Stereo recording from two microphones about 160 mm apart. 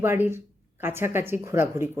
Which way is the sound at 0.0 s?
15° right (ahead or behind).